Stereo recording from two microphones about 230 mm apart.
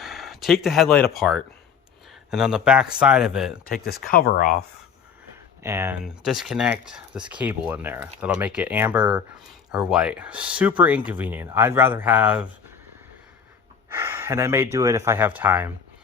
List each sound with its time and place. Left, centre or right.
0.0 s speech: centre
4.0 s speech: left
5.6 s speech: centre
13.9 s speech: centre